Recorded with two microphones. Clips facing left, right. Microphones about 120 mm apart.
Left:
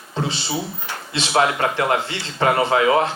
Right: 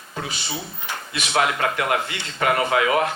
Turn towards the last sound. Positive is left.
turn(degrees=25)  # may be behind; listen again after turning